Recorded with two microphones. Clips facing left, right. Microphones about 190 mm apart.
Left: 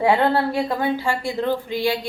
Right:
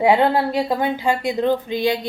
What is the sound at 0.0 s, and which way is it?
A woman's voice, 15° right (ahead or behind).